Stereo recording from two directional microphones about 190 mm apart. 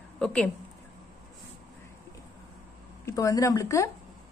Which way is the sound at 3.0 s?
15° left (ahead or behind).